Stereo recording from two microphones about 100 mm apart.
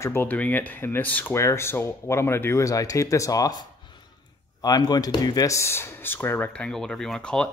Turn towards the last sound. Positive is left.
turn(degrees=10)  # may be behind; listen again after turning